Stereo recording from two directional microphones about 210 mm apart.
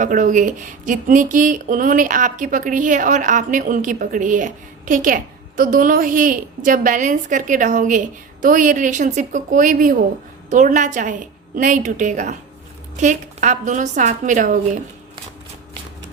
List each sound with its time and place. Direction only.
0.0 s speech: 35° right (ahead or behind)